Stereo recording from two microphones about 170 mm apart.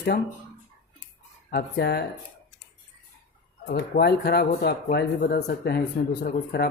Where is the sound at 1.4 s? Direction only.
65° left (ahead or behind).